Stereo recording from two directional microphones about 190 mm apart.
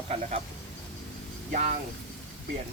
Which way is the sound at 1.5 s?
45° right (ahead or behind).